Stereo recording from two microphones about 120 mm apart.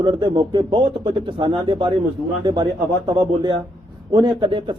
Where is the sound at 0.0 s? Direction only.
40° right (ahead or behind).